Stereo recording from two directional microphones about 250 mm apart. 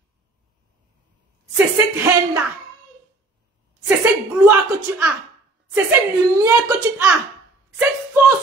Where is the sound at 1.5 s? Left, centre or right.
Centre.